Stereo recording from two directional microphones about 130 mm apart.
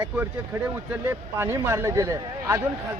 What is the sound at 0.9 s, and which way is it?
Speech, 15° right (ahead or behind).